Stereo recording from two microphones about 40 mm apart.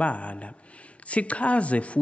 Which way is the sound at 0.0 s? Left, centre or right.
Left.